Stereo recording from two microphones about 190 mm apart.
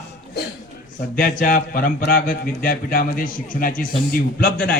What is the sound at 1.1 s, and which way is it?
Speech, 45° left (ahead or behind).